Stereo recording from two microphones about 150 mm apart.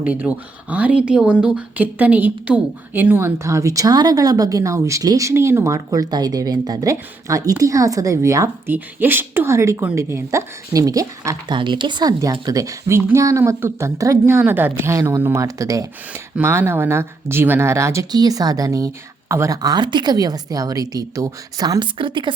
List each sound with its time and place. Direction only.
0.0 s a woman's voice: 10° right (ahead or behind); by 22.3 s 35° right (ahead or behind)